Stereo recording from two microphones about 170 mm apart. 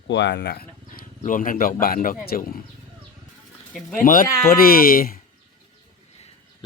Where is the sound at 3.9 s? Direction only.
55° left (ahead or behind).